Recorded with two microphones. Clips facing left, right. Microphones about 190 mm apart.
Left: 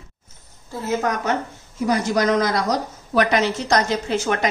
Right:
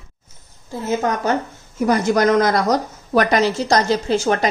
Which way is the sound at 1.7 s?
50° right (ahead or behind).